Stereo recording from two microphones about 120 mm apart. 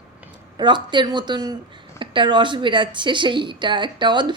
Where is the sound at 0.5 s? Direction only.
40° right (ahead or behind).